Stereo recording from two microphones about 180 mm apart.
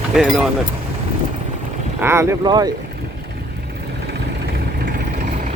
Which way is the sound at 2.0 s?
15° right (ahead or behind).